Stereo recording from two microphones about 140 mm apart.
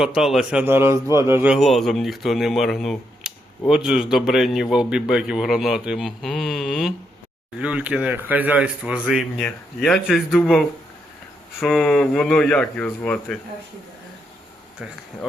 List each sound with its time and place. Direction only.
0.0 s speech: 5° right (ahead or behind)
0.6 s speech: 15° right (ahead or behind)
1.5 s speech: centre (ahead or behind)
9.4 s speech: 5° left (ahead or behind)
11.6 s speech: centre (ahead or behind)